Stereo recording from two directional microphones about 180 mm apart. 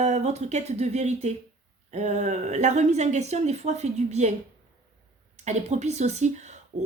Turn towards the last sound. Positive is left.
turn(degrees=-40)  # may be behind; listen again after turning